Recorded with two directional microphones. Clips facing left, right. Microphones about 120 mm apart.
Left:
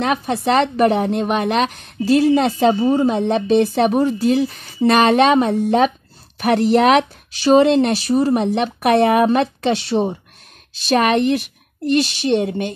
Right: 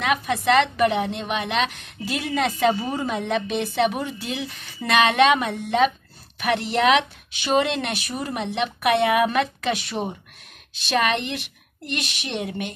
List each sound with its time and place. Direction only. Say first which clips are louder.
0.0 s speech: left 4 dB; 35° left (ahead or behind)
10.9 s speech: left 8 dB; 45° left (ahead or behind)